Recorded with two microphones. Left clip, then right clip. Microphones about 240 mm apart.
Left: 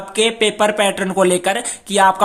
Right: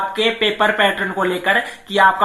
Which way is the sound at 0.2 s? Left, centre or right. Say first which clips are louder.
Left 3 dB; left.